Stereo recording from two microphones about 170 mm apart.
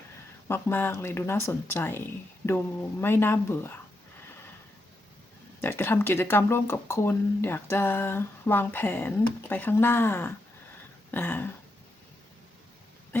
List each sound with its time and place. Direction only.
0.4 s speech: 15° left (ahead or behind)
5.6 s speech: 15° left (ahead or behind)